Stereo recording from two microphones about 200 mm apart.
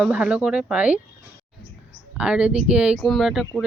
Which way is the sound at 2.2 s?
5° right (ahead or behind).